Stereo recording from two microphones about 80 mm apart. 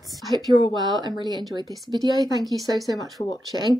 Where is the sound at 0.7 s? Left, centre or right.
Right.